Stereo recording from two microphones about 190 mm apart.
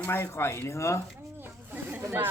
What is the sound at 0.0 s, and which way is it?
Speech, 10° left (ahead or behind).